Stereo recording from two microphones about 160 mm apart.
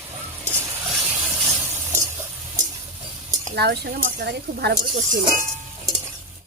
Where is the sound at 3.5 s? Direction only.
90° right.